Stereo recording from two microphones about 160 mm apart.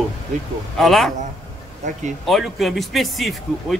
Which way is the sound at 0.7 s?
Centre (ahead or behind).